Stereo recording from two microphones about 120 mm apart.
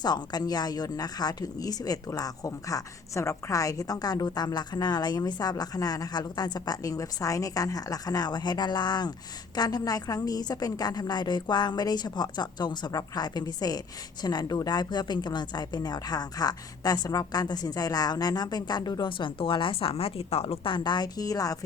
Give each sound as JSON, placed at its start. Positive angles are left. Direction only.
{"t": 0.0, "sound": "a woman's voice", "side_deg": 35}